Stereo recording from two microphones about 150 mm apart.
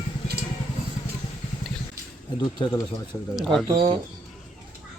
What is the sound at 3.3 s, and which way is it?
Speech, 5° left (ahead or behind).